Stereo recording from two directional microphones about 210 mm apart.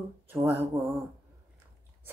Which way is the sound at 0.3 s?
10° right (ahead or behind).